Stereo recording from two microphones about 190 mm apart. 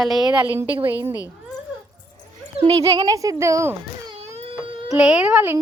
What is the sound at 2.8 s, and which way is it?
Speech, 20° right (ahead or behind).